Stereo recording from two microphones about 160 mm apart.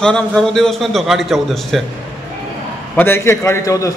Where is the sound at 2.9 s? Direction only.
15° left (ahead or behind).